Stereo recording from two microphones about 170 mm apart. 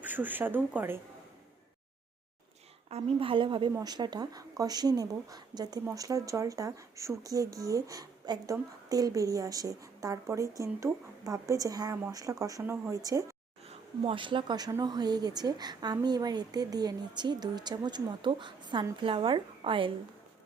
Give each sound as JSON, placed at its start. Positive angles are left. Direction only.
{"t": 0.0, "sound": "speech", "side_deg": -10}
{"t": 2.9, "sound": "a woman's voice", "side_deg": -30}
{"t": 13.7, "sound": "speech", "side_deg": -30}